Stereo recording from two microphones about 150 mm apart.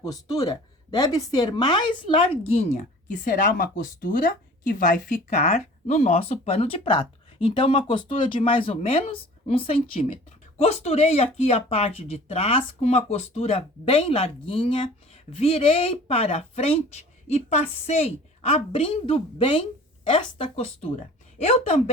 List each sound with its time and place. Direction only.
0.0 s speech: 25° left (ahead or behind); by 21.8 s 45° left (ahead or behind)